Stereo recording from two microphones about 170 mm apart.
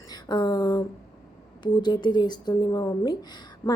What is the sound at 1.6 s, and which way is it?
A woman's voice, 25° left (ahead or behind).